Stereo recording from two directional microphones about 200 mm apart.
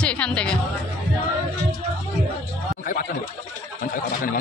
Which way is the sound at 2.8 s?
45° left (ahead or behind).